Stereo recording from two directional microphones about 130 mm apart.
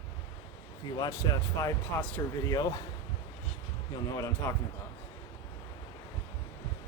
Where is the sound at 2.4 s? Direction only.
25° left (ahead or behind).